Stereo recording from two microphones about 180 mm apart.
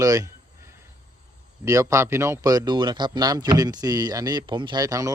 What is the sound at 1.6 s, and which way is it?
Speech, 15° right (ahead or behind).